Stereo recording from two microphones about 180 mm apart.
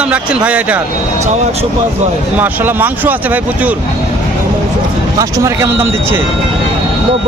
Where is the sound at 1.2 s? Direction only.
35° right (ahead or behind).